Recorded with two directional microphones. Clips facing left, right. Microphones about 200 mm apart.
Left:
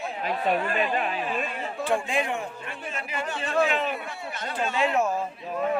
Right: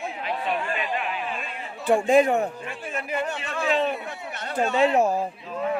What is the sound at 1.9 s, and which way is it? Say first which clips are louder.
Speech: right 9 dB; 45° right (ahead or behind).